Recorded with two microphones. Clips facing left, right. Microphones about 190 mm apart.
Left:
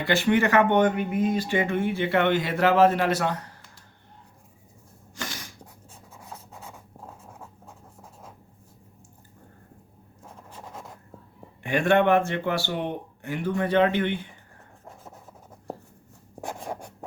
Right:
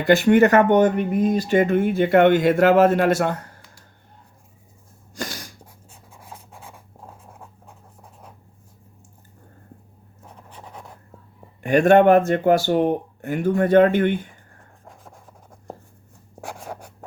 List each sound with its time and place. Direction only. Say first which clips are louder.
0.0 s speech: right 7 dB; 45° right (ahead or behind)
5.1 s a sound: right 5 dB; 40° right (ahead or behind)
6.1 s writing: right 1 dB; 10° right (ahead or behind)
10.6 s writing: even; centre (ahead or behind)
11.6 s speech: right 7 dB; 45° right (ahead or behind)
14.8 s rub: left 1 dB; 5° left (ahead or behind)
16.6 s writing: left 1 dB; 5° right (ahead or behind)